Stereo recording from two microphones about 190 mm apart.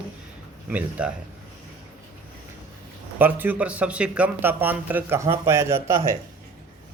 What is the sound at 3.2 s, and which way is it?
A man's voice, 10° right (ahead or behind).